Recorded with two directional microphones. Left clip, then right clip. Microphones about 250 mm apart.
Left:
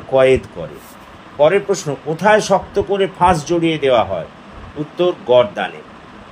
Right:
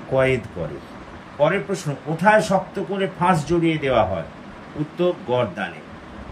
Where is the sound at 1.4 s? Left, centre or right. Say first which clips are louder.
Left 7 dB; left.